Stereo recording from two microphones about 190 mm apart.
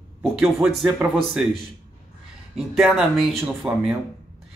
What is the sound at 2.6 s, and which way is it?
Speech, centre (ahead or behind).